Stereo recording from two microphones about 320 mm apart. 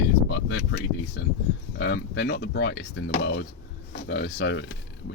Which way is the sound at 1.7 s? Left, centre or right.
Left.